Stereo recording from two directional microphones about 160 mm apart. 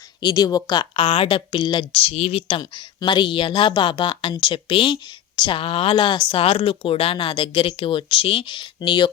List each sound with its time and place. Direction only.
0.2 s a woman's voice: 25° left (ahead or behind)
2.6 s a woman's voice: 30° left (ahead or behind)